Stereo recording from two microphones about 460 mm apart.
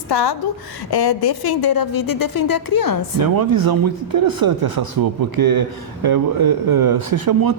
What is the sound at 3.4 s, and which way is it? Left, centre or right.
Speech, right.